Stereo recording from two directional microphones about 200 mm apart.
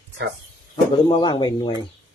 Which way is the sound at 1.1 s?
20° left (ahead or behind).